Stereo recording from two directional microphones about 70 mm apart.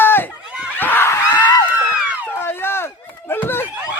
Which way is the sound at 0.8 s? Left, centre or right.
Left.